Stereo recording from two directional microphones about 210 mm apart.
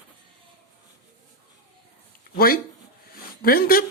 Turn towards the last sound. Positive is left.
turn(degrees=45)  # may be behind; listen again after turning